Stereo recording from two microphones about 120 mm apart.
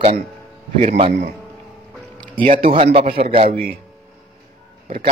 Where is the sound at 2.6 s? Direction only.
50° right (ahead or behind).